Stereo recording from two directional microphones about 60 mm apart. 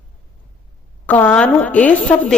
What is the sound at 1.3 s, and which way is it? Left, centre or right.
Speech, left.